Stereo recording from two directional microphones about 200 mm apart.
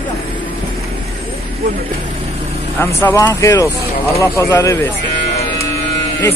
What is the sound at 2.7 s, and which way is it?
Speech, 15° left (ahead or behind).